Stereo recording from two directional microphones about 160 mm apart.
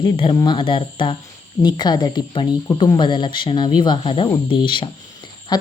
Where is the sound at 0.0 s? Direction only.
35° left (ahead or behind).